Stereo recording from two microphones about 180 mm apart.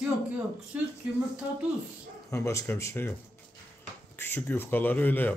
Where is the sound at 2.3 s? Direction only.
15° left (ahead or behind).